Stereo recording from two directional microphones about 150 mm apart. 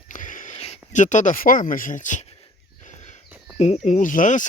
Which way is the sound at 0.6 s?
45° left (ahead or behind).